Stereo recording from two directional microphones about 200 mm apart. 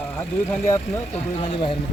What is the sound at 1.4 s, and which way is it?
Speech, 25° left (ahead or behind).